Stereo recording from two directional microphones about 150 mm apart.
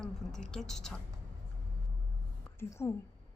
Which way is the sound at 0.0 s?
5° left (ahead or behind).